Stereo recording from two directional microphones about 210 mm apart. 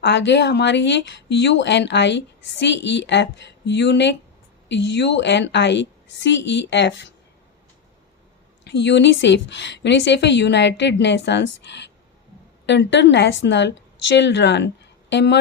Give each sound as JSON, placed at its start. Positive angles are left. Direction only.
{"t": 0.0, "sound": "speech", "side_deg": 55}
{"t": 8.6, "sound": "speech", "side_deg": 55}